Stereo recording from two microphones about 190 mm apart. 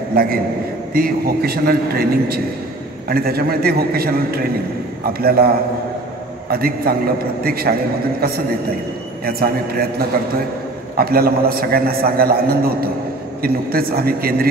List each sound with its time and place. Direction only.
0.1 s a man's voice: 50° right (ahead or behind)
9.2 s a man's voice: 50° right (ahead or behind)